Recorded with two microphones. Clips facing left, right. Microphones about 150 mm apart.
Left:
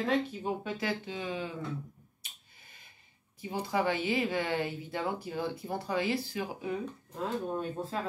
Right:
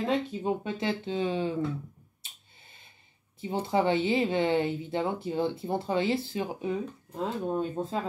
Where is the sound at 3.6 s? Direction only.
25° right (ahead or behind).